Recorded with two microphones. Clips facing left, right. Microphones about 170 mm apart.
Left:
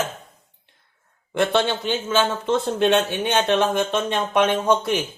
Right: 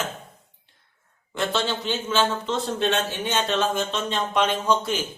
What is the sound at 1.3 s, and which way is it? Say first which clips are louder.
A man's voice: left 5 dB; 55° left (ahead or behind).